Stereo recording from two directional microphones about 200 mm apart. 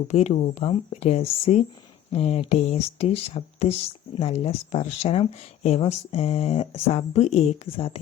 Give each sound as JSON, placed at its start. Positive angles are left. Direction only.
{"t": 0.1, "sound": "speech", "side_deg": 35}